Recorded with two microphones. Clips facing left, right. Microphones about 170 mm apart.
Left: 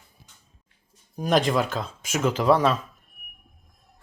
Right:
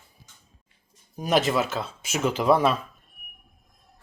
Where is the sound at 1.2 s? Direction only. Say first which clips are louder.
Left 1 dB; 5° right (ahead or behind).